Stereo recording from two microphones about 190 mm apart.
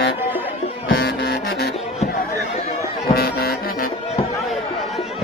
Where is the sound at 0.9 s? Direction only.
55° left (ahead or behind).